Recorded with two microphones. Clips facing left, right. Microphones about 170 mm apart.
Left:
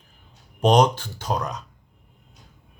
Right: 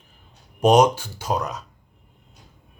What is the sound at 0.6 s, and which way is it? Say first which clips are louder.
Speech: right 2 dB; 10° right (ahead or behind).